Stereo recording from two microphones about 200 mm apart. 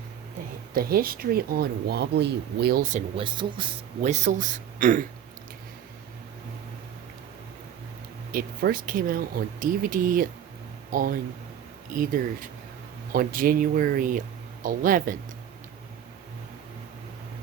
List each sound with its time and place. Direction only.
0.7 s speech: 50° right (ahead or behind)
3.2 s speech: 25° right (ahead or behind)
4.0 s a man's voice: 35° right (ahead or behind)
8.3 s speech: 45° right (ahead or behind)